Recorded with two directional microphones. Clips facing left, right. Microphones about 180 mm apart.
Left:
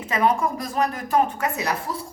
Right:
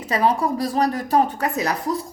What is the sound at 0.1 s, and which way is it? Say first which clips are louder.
A woman's voice: right 2 dB; 35° right (ahead or behind).